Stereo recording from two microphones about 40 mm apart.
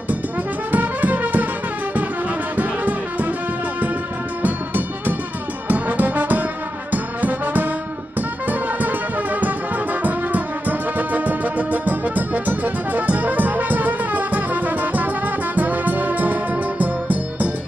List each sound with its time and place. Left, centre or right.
0.7 s music: right
2.5 s music: right
4.4 s music: right
5.7 s brass instrument: right
6.9 s music: right